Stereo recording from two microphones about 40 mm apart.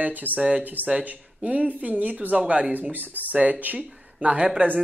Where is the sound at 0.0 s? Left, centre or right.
Right.